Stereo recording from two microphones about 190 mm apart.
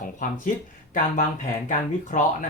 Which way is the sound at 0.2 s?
45° left (ahead or behind).